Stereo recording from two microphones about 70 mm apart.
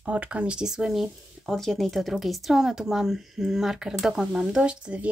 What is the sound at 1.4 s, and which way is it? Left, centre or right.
A woman's voice, centre.